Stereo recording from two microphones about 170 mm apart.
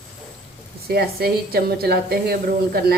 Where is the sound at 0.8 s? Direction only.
65° right (ahead or behind).